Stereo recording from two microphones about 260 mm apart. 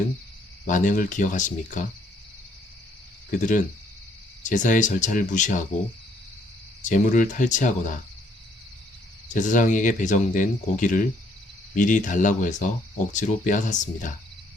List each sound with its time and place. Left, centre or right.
0.7 s speech: left
3.3 s speech: left
6.8 s speech: left
9.3 s speech: left